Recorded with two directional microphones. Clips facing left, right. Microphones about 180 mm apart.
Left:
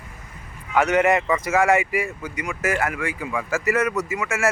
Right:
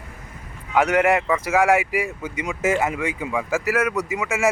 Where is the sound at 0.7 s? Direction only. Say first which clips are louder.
Even; 10° right (ahead or behind).